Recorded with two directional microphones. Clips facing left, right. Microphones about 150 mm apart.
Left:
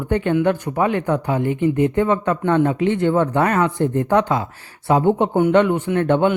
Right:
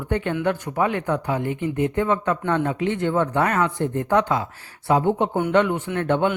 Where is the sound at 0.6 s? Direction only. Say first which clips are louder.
Left 3 dB; 35° left (ahead or behind).